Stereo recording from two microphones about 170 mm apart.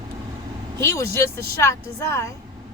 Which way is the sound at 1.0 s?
70° right (ahead or behind).